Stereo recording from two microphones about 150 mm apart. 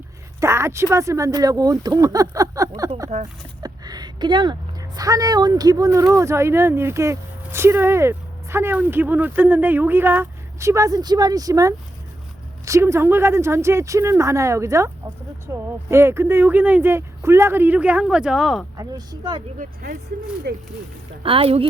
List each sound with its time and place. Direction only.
0.3 s a woman's voice: 20° right (ahead or behind)
3.1 s speech: 50° right (ahead or behind)
3.6 s a woman's voice: 25° right (ahead or behind); by 18.6 s centre (ahead or behind)
18.8 s a woman's voice: 30° right (ahead or behind)
19.5 s speech: 70° right (ahead or behind)
20.5 s speech: 90° right
21.2 s speech: 40° right (ahead or behind)